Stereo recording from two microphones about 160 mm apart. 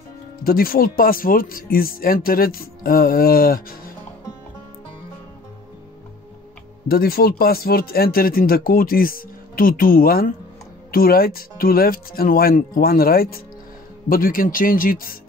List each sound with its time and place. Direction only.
0.4 s speech: 70° left (ahead or behind)
6.9 s speech: 70° left (ahead or behind)